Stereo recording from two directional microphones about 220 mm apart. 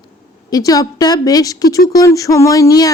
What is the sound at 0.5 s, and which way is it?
Speech, 15° left (ahead or behind).